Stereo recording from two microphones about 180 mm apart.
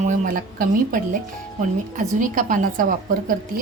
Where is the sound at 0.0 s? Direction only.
50° right (ahead or behind).